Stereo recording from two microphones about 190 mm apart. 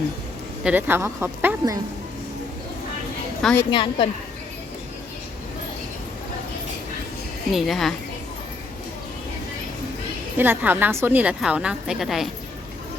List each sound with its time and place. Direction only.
0.6 s a woman's voice: 10° right (ahead or behind)
3.4 s a woman's voice: 10° left (ahead or behind)
3.7 s a woman's voice: 25° left (ahead or behind)
7.5 s a woman's voice: centre (ahead or behind)
10.3 s a woman's voice: 10° right (ahead or behind)